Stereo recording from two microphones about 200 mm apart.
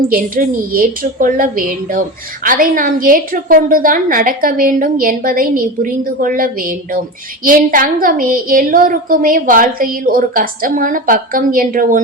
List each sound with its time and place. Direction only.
0.1 s a woman's voice: 45° right (ahead or behind)